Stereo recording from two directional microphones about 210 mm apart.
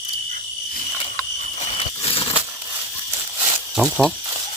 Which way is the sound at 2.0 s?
25° left (ahead or behind).